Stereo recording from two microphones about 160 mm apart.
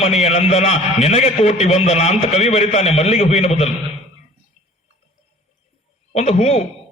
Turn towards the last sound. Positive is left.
turn(degrees=45)  # may be behind; listen again after turning